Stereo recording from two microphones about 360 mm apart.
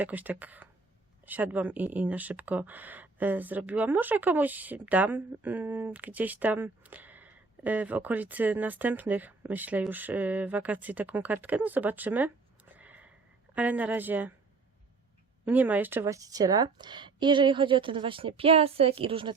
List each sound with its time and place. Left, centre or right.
0.0 s speech: centre
12.7 s sniff: centre
13.5 s speech: centre
15.4 s a woman's voice: centre